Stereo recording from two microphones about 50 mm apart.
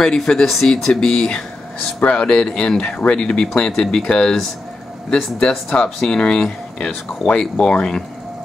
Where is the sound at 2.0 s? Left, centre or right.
Left.